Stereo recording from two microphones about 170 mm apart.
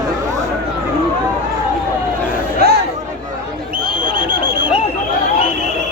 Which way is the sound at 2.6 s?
65° right (ahead or behind).